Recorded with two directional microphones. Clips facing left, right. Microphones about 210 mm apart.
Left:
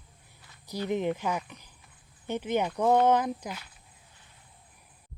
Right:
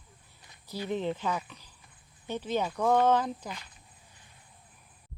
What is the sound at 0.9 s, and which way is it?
Speech, 15° left (ahead or behind).